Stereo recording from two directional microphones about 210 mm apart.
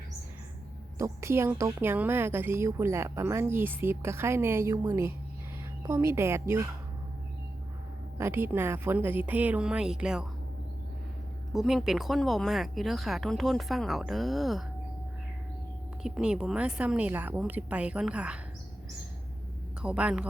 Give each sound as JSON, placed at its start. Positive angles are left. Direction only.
{"t": 0.9, "sound": "a woman's voice", "side_deg": -15}
{"t": 8.2, "sound": "a woman's voice", "side_deg": -10}
{"t": 11.5, "sound": "speech", "side_deg": 0}
{"t": 16.0, "sound": "speech", "side_deg": -5}
{"t": 19.8, "sound": "speech", "side_deg": -5}